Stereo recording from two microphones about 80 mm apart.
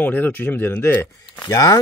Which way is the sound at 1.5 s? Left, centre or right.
Left.